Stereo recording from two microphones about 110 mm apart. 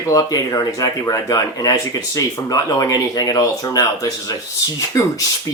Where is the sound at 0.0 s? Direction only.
30° left (ahead or behind).